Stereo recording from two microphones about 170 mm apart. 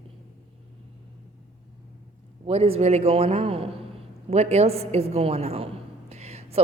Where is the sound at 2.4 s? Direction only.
35° right (ahead or behind).